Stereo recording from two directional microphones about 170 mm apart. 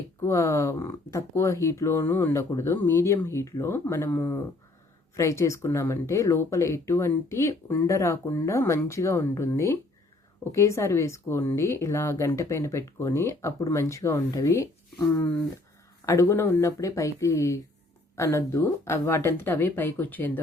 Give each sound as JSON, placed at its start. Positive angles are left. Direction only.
{"t": 0.2, "sound": "speech", "side_deg": 15}
{"t": 16.0, "sound": "speech", "side_deg": 15}